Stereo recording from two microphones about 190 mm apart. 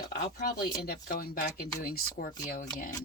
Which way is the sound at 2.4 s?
40° left (ahead or behind).